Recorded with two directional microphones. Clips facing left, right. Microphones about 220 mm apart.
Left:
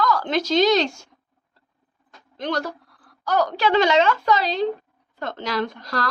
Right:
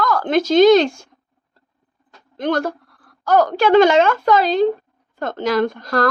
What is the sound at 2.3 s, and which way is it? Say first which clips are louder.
A woman's voice: right 6 dB; 50° right (ahead or behind).